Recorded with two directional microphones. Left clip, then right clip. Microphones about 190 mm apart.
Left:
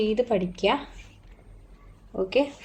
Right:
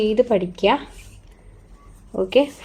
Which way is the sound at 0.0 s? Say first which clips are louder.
Right 6 dB; 45° right (ahead or behind).